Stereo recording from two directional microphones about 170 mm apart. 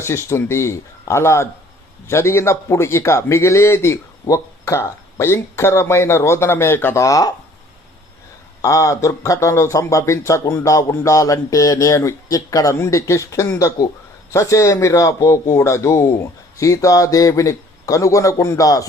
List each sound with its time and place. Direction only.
0.0 s a man's voice: 15° left (ahead or behind)
8.6 s a man's voice: 20° left (ahead or behind)